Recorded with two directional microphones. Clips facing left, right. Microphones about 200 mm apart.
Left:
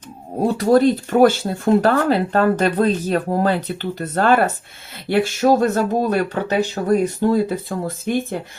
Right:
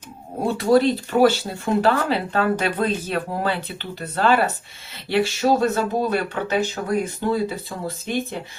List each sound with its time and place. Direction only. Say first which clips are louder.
0.4 s speech: left 3 dB; 40° left (ahead or behind)
7.7 s speech: left 5 dB; 50° left (ahead or behind)